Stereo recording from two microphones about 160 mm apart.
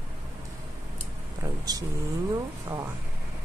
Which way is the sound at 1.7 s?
25° right (ahead or behind).